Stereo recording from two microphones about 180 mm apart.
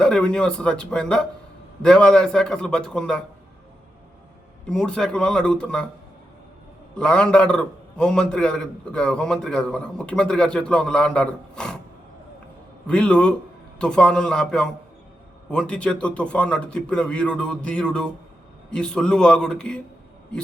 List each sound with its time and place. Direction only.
0.0 s a man's voice: 5° left (ahead or behind)
4.7 s a man's voice: 5° left (ahead or behind)
6.9 s a man's voice: 5° left (ahead or behind)
12.9 s a man's voice: 5° left (ahead or behind)